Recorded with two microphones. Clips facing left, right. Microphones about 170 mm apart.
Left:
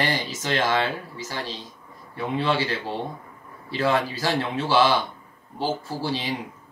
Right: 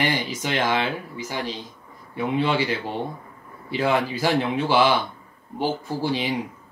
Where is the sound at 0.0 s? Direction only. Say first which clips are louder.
Right 2 dB; 15° right (ahead or behind).